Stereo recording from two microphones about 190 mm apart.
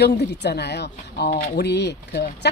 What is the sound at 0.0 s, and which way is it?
Speech, 65° left (ahead or behind).